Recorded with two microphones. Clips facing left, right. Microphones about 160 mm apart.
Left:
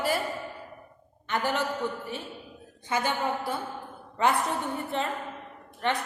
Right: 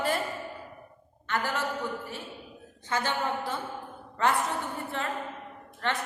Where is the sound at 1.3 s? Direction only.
20° left (ahead or behind).